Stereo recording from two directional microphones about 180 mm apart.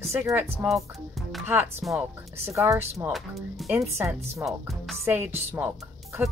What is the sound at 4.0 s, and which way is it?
Speech, 15° right (ahead or behind).